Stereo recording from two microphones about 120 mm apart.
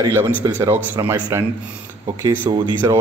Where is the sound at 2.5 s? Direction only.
35° right (ahead or behind).